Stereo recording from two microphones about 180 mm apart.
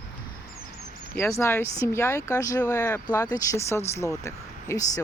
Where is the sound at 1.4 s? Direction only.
15° left (ahead or behind).